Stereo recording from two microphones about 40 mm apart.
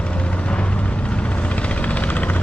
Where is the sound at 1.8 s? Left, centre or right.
Left.